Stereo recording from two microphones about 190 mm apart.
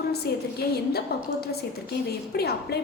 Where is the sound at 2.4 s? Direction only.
55° left (ahead or behind).